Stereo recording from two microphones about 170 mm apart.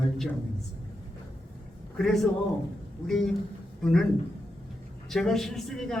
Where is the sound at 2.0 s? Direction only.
Centre (ahead or behind).